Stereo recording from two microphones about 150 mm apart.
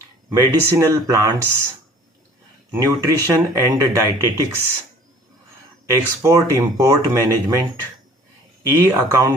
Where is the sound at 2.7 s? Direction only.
20° right (ahead or behind).